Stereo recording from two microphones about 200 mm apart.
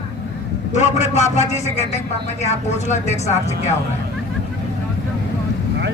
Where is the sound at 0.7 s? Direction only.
35° left (ahead or behind).